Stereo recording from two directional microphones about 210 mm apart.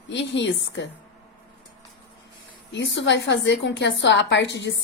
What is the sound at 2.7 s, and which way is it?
A woman's voice, 60° left (ahead or behind).